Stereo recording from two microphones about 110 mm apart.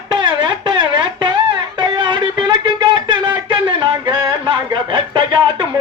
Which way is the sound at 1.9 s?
45° right (ahead or behind).